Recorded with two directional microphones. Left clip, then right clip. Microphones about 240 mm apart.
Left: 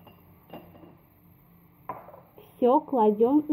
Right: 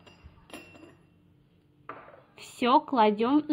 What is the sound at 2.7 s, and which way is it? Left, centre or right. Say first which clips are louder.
Speech: right 1 dB; right.